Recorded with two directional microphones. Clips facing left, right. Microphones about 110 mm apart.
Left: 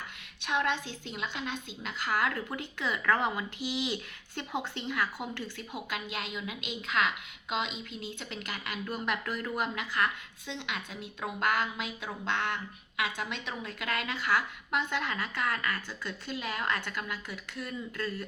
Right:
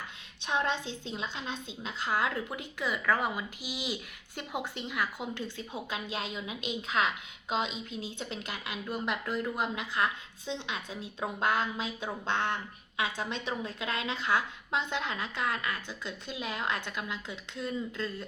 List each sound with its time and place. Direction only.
0.4 s speech: 30° right (ahead or behind)
6.1 s a woman's voice: 30° right (ahead or behind)
8.2 s a woman's voice: 30° right (ahead or behind)
8.9 s speech: 15° right (ahead or behind)
11.2 s speech: 30° right (ahead or behind)